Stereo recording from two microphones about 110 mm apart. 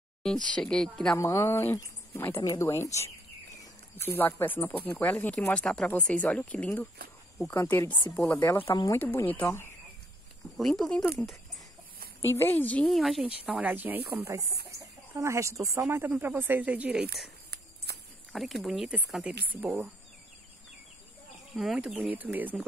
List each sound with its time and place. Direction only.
0.2 s speech: 5° left (ahead or behind)
1.1 s speech: 25° left (ahead or behind)
8.1 s speech: 5° left (ahead or behind)
8.4 s speech: 25° left (ahead or behind)
10.6 s speech: 5° left (ahead or behind)
12.4 s speech: 20° left (ahead or behind)
12.9 s speech: centre (ahead or behind)
13.5 s speech: 10° right (ahead or behind)
18.3 s speech: centre (ahead or behind)
21.5 s speech: 5° right (ahead or behind)